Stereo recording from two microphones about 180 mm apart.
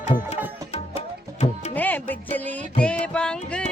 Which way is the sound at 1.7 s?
10° left (ahead or behind).